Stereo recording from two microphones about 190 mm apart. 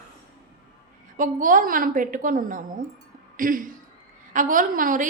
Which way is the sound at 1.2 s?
45° right (ahead or behind).